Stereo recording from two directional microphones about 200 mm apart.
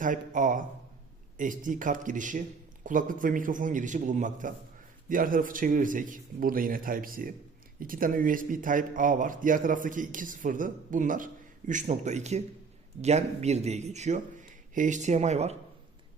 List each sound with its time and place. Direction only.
0.0 s a man's voice: 40° right (ahead or behind)